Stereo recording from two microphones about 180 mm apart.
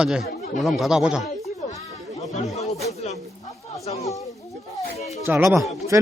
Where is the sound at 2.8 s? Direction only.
40° left (ahead or behind).